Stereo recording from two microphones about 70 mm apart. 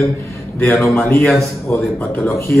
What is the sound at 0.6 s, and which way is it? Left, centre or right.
Speech, left.